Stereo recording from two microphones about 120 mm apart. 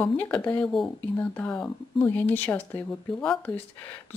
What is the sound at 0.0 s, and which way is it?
Speech, 15° left (ahead or behind).